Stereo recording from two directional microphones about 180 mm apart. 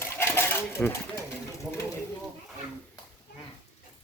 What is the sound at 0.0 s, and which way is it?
Sewing machine, 15° left (ahead or behind).